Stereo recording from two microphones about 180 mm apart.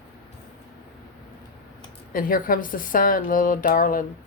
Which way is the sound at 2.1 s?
50° left (ahead or behind).